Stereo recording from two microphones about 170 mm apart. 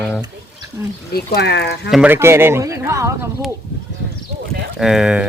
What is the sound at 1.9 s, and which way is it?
Speech, 10° right (ahead or behind).